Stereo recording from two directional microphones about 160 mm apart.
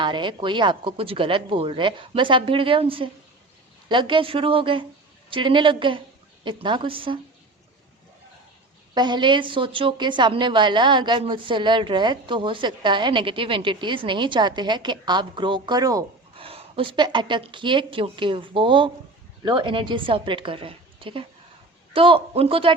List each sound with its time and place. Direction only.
0.0 s speech: 30° right (ahead or behind)
9.0 s a woman's voice: 30° right (ahead or behind)
16.3 s speech: 35° right (ahead or behind)